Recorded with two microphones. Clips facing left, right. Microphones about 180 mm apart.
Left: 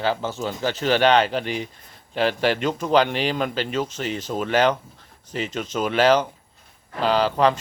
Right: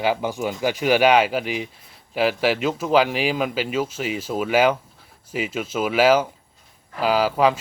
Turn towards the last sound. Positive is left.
turn(degrees=-5)  # may be behind; listen again after turning